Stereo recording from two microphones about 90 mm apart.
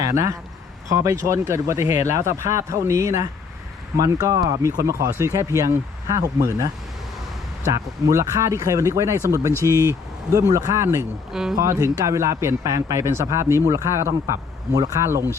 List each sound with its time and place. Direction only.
0.0 s speech: 35° right (ahead or behind)
11.3 s speech: 5° right (ahead or behind)
11.5 s speech: 40° right (ahead or behind)